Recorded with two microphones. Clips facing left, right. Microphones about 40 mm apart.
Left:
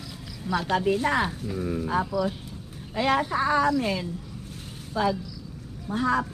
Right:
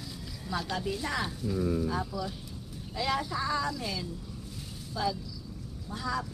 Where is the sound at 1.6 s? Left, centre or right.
Left.